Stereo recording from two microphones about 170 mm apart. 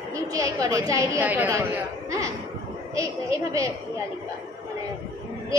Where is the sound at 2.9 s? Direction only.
20° right (ahead or behind).